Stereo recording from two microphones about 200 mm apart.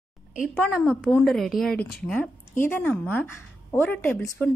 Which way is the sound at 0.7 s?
Centre (ahead or behind).